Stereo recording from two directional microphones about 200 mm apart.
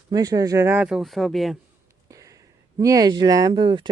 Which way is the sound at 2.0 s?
15° right (ahead or behind).